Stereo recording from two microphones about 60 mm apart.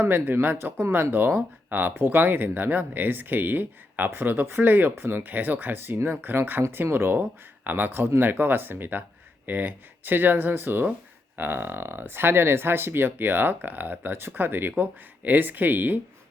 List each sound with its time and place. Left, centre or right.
0.0 s speech: right